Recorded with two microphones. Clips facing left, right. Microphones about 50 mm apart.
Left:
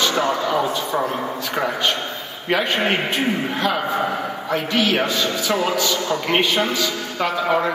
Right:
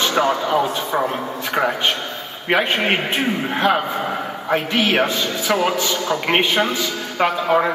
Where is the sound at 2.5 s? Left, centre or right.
Right.